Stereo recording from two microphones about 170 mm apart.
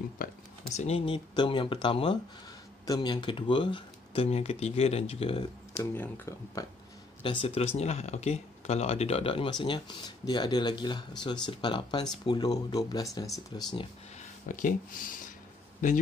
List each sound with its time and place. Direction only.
0.2 s speech: 40° left (ahead or behind)
5.9 s speech: 15° left (ahead or behind)
7.2 s speech: 35° left (ahead or behind)
14.5 s speech: 50° left (ahead or behind)